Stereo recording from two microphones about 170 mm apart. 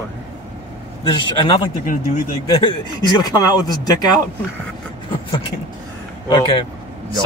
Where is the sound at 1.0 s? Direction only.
30° left (ahead or behind).